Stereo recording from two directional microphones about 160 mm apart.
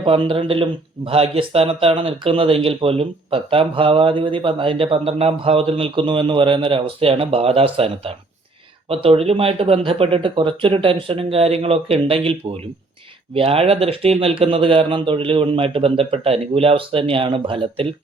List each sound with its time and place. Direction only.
0.0 s speech: 30° right (ahead or behind)